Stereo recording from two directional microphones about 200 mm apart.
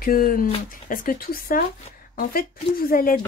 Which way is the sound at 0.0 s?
45° left (ahead or behind).